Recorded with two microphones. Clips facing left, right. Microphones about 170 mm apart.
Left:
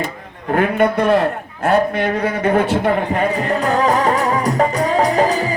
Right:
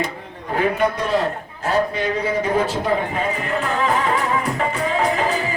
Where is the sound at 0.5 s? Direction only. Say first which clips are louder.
Left 4 dB; 60° left (ahead or behind).